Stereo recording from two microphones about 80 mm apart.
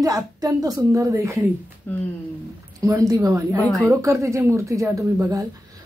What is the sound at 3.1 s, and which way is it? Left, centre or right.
A woman's voice, right.